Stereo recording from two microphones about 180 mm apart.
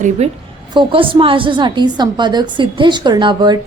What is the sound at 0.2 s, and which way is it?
A woman's voice, 35° right (ahead or behind).